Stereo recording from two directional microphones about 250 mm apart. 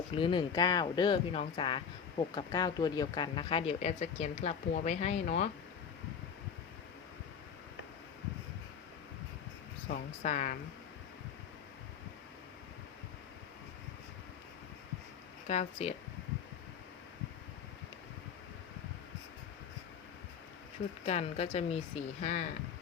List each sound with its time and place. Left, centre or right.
0.1 s speech: centre
9.9 s speech: left
15.4 s speech: left
21.0 s speech: left